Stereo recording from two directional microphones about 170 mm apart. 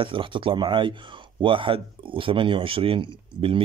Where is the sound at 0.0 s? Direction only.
30° right (ahead or behind).